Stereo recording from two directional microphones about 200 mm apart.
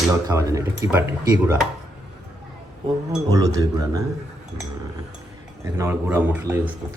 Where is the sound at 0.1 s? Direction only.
15° right (ahead or behind).